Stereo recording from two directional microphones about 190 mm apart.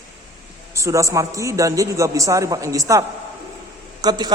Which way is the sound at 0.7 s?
15° right (ahead or behind).